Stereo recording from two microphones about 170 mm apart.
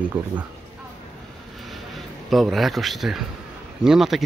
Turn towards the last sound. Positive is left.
turn(degrees=-5)  # may be behind; listen again after turning